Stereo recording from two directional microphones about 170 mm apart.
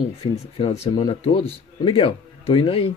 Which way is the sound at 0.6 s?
35° left (ahead or behind).